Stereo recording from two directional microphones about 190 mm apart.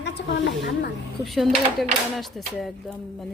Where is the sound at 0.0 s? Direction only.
65° left (ahead or behind).